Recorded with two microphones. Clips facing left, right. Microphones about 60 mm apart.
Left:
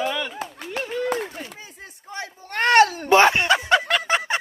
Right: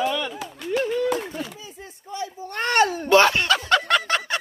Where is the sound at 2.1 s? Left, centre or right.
Left.